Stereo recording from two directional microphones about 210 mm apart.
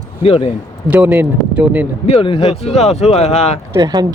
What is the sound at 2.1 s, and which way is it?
Speech, 25° left (ahead or behind).